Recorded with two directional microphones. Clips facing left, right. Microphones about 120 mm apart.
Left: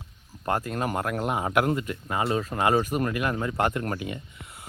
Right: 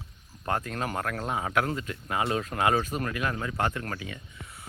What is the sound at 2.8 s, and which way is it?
Speech, 15° left (ahead or behind).